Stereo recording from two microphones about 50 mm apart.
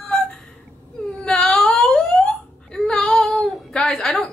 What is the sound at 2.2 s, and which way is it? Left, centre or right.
Hiccup, centre.